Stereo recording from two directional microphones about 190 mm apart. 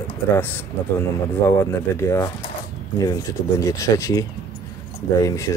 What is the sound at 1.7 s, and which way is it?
Speech, 15° left (ahead or behind).